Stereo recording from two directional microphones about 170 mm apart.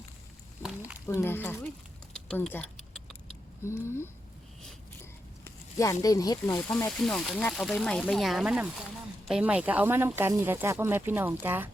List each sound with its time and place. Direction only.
0.6 s a sound: 5° right (ahead or behind)
1.0 s speech: 15° left (ahead or behind)
2.1 s keys jangling: 5° left (ahead or behind)
3.6 s speech: 15° left (ahead or behind)
5.7 s speech: 20° left (ahead or behind)
6.9 s speech: 5° left (ahead or behind)